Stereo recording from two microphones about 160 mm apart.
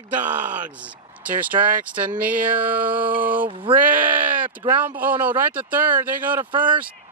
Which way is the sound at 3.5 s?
35° right (ahead or behind).